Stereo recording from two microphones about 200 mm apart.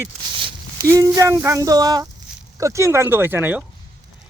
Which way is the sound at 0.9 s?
15° right (ahead or behind).